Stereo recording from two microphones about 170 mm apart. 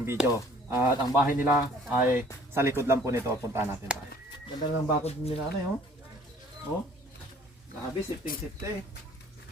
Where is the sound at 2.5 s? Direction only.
15° right (ahead or behind).